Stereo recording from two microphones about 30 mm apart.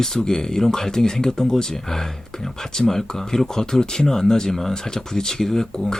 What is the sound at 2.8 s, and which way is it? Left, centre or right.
A man's voice, centre.